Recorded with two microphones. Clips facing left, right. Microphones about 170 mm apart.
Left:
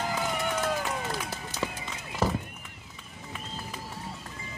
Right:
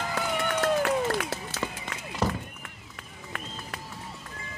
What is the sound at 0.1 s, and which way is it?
Run, 70° right (ahead or behind).